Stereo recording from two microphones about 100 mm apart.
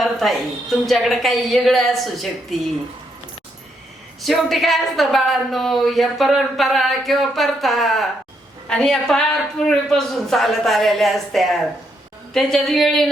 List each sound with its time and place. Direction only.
0.0 s a woman's voice: centre (ahead or behind)
4.2 s a woman's voice: centre (ahead or behind)